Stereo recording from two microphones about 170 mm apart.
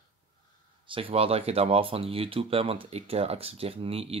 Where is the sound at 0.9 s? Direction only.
35° right (ahead or behind).